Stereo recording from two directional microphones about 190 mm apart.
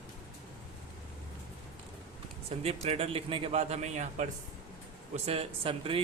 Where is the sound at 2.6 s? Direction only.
35° right (ahead or behind).